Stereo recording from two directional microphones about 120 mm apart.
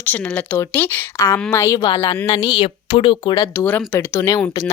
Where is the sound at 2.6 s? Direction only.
45° left (ahead or behind).